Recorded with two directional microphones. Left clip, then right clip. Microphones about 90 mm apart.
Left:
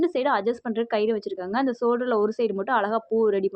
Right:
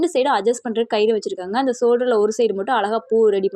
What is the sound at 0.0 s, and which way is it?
Speech, 30° right (ahead or behind).